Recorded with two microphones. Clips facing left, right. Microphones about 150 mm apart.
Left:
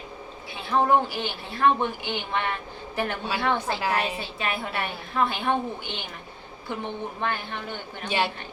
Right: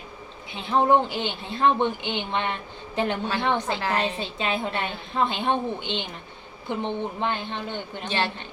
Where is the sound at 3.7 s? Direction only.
10° left (ahead or behind).